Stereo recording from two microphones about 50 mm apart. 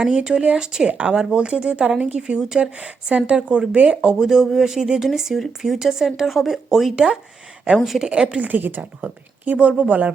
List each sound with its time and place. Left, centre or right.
0.2 s speech: centre
4.2 s speech: centre
6.9 s speech: centre
8.4 s a woman's voice: right